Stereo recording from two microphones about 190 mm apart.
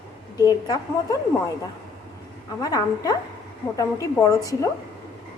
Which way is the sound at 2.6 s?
20° left (ahead or behind).